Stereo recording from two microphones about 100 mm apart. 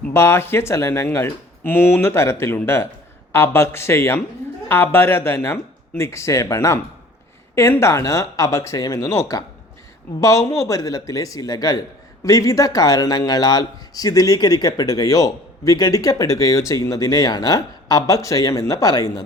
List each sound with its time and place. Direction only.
0.1 s a man's voice: 25° left (ahead or behind)